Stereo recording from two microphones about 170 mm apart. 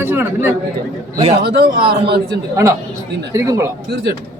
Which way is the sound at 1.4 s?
70° right (ahead or behind).